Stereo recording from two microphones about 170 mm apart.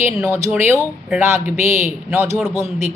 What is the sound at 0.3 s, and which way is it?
A woman's voice, 15° right (ahead or behind).